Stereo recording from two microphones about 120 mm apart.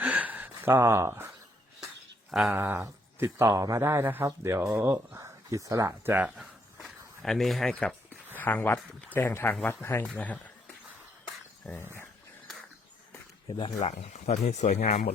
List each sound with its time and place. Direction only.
0.0 s a sound: 10° right (ahead or behind)
2.3 s speech: 5° right (ahead or behind)
2.6 s speech: 20° right (ahead or behind)
6.2 s cricket: 5° right (ahead or behind)
8.4 s speech: 15° left (ahead or behind)
13.7 s speech: 65° left (ahead or behind); by 15.0 s 80° left